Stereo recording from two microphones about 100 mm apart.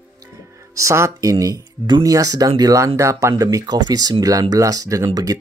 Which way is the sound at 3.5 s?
45° right (ahead or behind).